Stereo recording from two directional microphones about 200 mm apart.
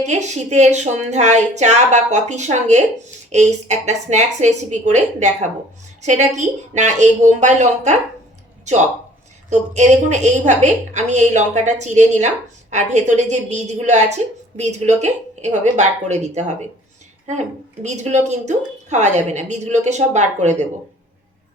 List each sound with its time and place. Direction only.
0.0 s a woman's voice: 35° right (ahead or behind)
17.8 s a woman's voice: 35° right (ahead or behind)